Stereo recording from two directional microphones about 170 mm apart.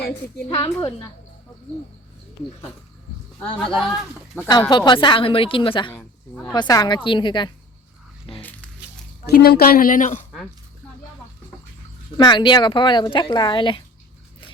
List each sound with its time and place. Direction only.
0.4 s speech: 30° left (ahead or behind)
3.4 s speech: 5° left (ahead or behind)
4.9 s a woman's voice: 30° left (ahead or behind)
5.9 s speech: 10° left (ahead or behind)
6.5 s speech: 25° left (ahead or behind)
8.4 s squish: 10° left (ahead or behind)
9.2 s a woman's voice: 65° left (ahead or behind); by 10.2 s 50° left (ahead or behind)
12.1 s speech: 25° left (ahead or behind)